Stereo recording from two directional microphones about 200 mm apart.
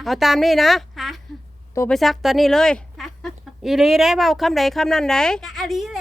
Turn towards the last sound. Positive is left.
turn(degrees=0)  # may be behind; listen again after turning